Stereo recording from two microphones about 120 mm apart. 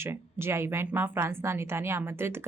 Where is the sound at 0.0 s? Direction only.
20° right (ahead or behind).